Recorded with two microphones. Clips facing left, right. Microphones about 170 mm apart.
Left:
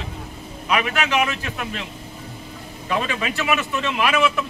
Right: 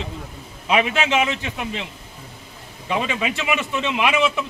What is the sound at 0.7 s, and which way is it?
A man's voice, 25° right (ahead or behind).